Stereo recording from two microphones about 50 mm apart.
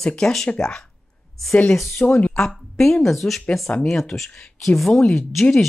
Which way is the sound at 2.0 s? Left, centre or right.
Left.